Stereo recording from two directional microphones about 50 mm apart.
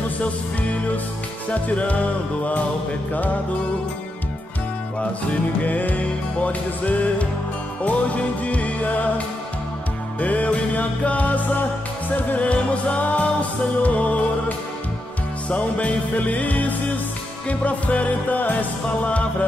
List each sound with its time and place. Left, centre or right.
1.5 s music: left
5.6 s music: left
10.2 s music: left
15.5 s music: left